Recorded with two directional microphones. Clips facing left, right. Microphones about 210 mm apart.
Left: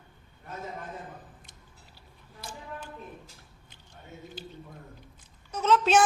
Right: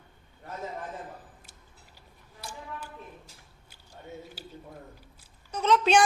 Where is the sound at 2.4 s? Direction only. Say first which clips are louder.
Even; 10° right (ahead or behind).